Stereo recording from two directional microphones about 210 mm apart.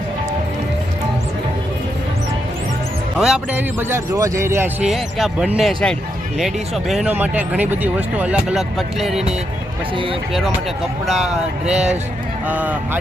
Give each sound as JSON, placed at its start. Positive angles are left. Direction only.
{"t": 3.2, "sound": "speech", "side_deg": -5}
{"t": 11.0, "sound": "speech", "side_deg": 0}